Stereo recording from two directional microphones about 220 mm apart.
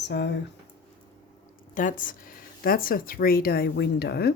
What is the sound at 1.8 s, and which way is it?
Speech, 35° left (ahead or behind).